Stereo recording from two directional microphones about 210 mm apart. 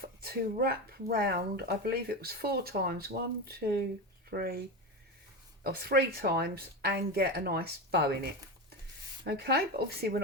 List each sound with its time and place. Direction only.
0.0 s speech: 45° right (ahead or behind)
4.3 s speech: 45° right (ahead or behind)
5.6 s speech: 50° right (ahead or behind)